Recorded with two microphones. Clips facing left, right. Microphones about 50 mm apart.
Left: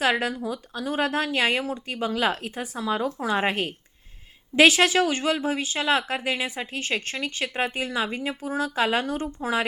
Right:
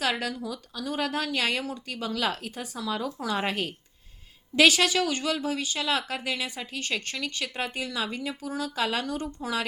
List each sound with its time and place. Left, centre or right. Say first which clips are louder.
0.0 s speech: left 5 dB; left